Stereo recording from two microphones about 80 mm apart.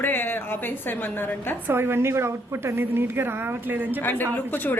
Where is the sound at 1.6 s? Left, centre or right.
Right.